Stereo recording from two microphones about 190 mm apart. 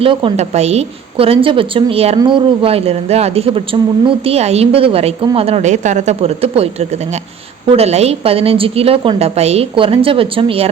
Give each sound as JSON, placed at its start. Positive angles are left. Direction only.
{"t": 0.0, "sound": "a woman's voice", "side_deg": -25}